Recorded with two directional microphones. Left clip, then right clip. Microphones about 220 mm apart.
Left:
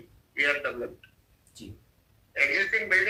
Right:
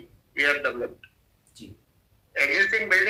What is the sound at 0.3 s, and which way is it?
Speech, 20° right (ahead or behind).